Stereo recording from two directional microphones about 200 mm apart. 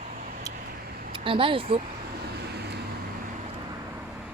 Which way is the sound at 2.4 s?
55° right (ahead or behind).